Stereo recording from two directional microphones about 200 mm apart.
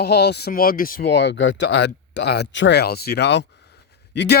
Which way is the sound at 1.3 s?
60° left (ahead or behind).